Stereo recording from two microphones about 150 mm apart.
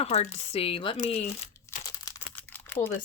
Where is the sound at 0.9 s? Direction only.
50° left (ahead or behind).